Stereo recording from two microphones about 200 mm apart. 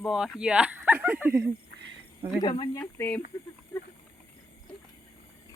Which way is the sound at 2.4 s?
20° left (ahead or behind).